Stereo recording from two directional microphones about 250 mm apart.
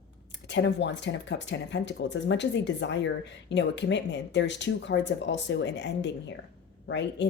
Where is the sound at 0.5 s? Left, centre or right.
Left.